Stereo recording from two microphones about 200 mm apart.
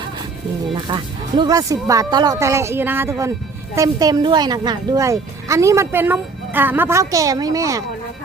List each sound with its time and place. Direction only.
0.7 s speech: 25° right (ahead or behind)